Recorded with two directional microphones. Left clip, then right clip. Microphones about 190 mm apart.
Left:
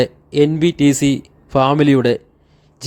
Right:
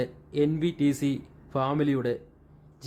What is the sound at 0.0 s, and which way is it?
Speech, 35° left (ahead or behind).